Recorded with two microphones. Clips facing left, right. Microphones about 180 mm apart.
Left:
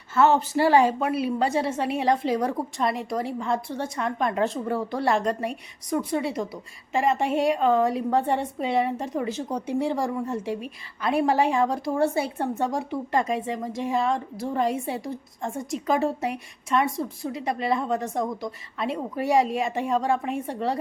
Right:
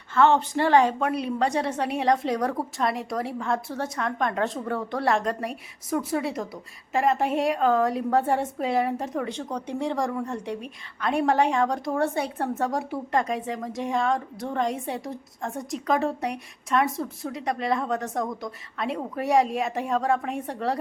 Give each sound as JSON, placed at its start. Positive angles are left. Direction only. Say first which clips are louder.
{"t": 0.1, "sound": "a woman's voice", "louder": "even", "side_deg": 5}